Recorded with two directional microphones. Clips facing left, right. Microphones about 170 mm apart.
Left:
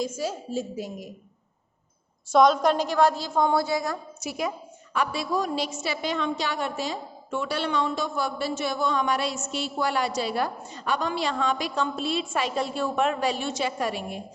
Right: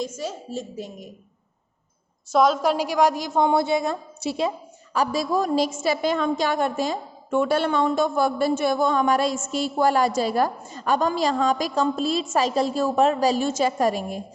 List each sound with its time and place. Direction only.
0.0 s a woman's voice: 5° left (ahead or behind)
2.3 s a woman's voice: 5° right (ahead or behind); by 4.5 s 30° right (ahead or behind)
4.9 s a woman's voice: 40° right (ahead or behind)